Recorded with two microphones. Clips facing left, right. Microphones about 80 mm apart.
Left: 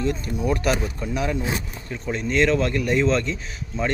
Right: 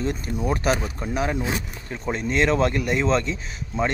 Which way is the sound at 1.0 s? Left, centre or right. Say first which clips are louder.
Right 1 dB; right.